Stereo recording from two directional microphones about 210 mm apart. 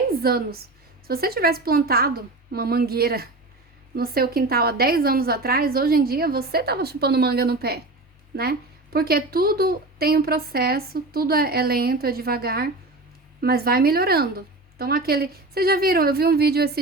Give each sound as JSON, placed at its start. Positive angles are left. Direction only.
{"t": 0.2, "sound": "a woman's voice", "side_deg": -45}